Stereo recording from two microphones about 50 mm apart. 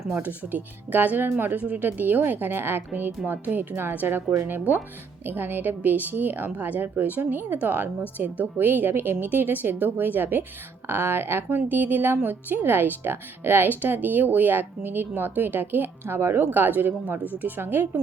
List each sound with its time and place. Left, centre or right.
0.1 s speech: right
1.5 s speech: right